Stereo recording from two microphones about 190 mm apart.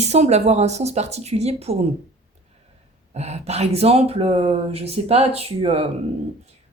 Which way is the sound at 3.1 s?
35° right (ahead or behind).